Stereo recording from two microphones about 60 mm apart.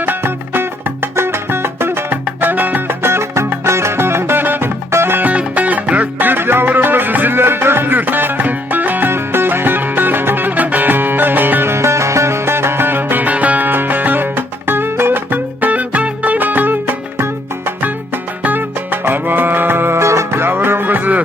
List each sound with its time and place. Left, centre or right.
0.0 s music: right
18.4 s music: right